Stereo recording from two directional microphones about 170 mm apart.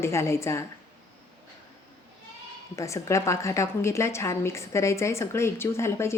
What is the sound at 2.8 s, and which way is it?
A woman's voice, 15° left (ahead or behind).